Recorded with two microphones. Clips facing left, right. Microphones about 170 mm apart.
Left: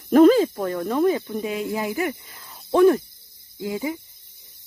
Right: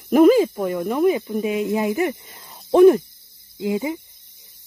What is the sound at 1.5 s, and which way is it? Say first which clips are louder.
Speech: right 6 dB; 20° right (ahead or behind).